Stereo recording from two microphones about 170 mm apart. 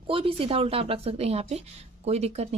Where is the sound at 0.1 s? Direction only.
30° right (ahead or behind).